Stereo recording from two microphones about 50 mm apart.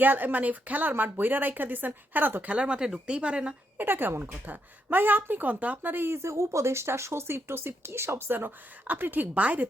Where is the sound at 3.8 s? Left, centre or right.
Right.